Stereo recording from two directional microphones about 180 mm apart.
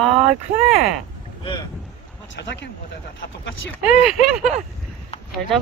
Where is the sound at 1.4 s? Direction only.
25° left (ahead or behind).